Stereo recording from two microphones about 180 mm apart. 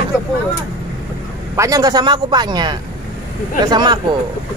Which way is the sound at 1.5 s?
20° right (ahead or behind).